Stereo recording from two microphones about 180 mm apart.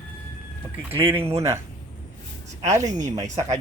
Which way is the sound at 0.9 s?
10° right (ahead or behind).